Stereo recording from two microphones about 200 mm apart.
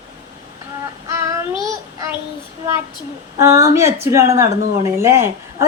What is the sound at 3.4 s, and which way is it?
A woman's voice, 15° right (ahead or behind).